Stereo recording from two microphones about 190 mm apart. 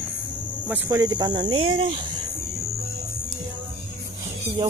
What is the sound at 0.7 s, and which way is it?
Speech, 15° right (ahead or behind).